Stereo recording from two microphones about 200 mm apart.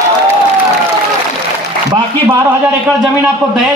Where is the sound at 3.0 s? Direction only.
5° right (ahead or behind).